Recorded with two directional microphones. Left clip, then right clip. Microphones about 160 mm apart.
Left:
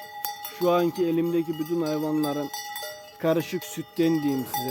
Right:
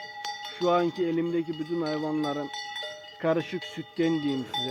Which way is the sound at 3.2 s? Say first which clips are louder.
Left 2 dB; 30° left (ahead or behind).